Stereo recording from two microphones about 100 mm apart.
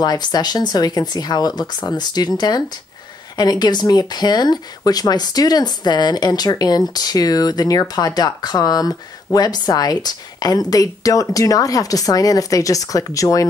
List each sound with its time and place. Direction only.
0.0 s speech: 45° left (ahead or behind)